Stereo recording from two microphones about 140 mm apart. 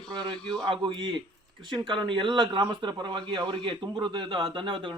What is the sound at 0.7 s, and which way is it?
Speech, 35° right (ahead or behind).